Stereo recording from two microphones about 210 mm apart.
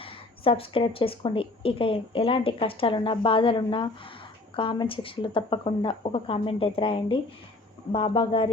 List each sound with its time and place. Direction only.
0.0 s speech: 25° left (ahead or behind)